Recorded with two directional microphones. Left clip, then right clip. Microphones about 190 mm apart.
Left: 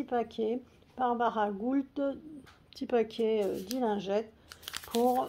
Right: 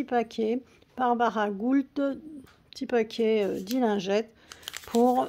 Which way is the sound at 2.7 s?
30° right (ahead or behind).